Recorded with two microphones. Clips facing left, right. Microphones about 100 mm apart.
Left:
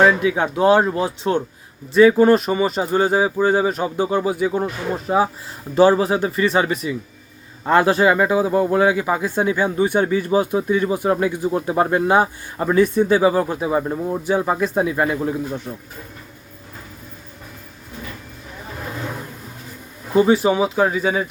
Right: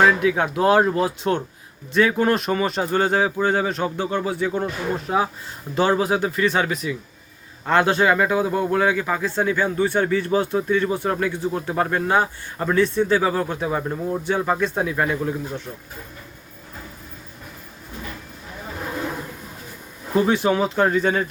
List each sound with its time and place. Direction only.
0.0 s speech: 5° left (ahead or behind)
15.7 s speech: 20° left (ahead or behind)
20.1 s speech: 5° left (ahead or behind)